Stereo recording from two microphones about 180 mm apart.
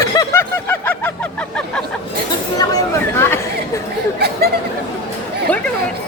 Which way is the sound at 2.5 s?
15° left (ahead or behind).